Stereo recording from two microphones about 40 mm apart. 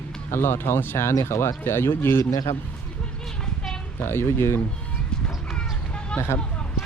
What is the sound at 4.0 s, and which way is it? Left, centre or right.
Speech, left.